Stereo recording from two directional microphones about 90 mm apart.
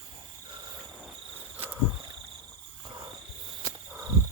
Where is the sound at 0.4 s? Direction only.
50° right (ahead or behind).